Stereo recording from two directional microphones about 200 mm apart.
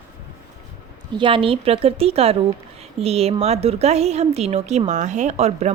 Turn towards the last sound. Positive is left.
turn(degrees=-35)  # may be behind; listen again after turning